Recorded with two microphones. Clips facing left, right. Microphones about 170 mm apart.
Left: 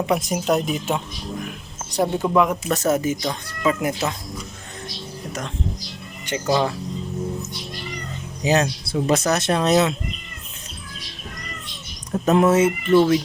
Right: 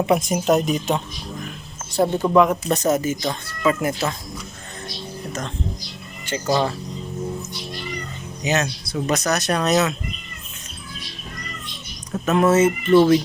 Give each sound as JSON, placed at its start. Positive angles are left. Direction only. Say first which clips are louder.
{"t": 0.0, "sound": "a woman's voice", "louder": "right 3 dB", "side_deg": 0}
{"t": 2.6, "sound": "speech", "louder": "right 1 dB", "side_deg": -20}
{"t": 2.9, "sound": "speech", "louder": "even", "side_deg": 15}
{"t": 6.2, "sound": "speech", "louder": "even", "side_deg": 15}
{"t": 8.4, "sound": "speech", "louder": "left 3 dB", "side_deg": 30}
{"t": 12.3, "sound": "a woman's voice", "louder": "even", "side_deg": 15}